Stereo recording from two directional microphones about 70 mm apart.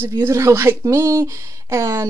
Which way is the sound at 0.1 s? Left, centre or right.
Right.